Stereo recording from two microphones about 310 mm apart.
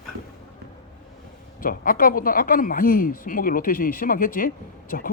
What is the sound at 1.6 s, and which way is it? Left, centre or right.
Speech, left.